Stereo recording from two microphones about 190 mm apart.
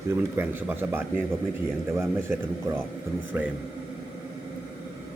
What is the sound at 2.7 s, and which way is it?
Speech, 15° right (ahead or behind).